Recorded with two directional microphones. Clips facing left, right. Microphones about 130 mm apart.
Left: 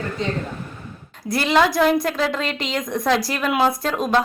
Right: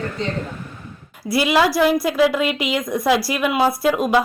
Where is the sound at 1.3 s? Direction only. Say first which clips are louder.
Right 1 dB; 5° right (ahead or behind).